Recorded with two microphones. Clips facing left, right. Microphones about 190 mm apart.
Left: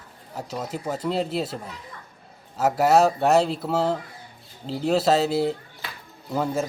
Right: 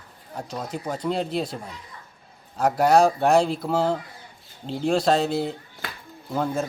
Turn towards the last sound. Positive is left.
turn(degrees=5)  # may be behind; listen again after turning